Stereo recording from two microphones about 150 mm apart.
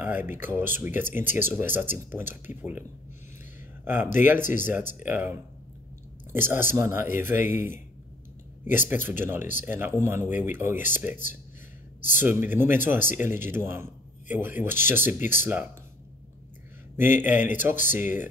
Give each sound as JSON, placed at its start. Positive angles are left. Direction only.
{"t": 0.0, "sound": "a man's voice", "side_deg": -15}
{"t": 3.8, "sound": "a man's voice", "side_deg": -15}
{"t": 4.4, "sound": "speech", "side_deg": 60}
{"t": 4.6, "sound": "a man's voice", "side_deg": -15}
{"t": 16.9, "sound": "a man's voice", "side_deg": -15}